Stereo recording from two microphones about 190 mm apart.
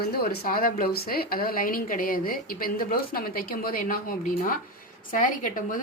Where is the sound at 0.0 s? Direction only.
55° left (ahead or behind).